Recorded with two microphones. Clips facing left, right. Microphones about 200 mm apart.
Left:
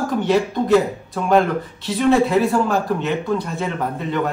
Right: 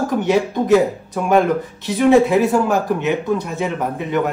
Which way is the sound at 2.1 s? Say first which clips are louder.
Right 3 dB; 15° right (ahead or behind).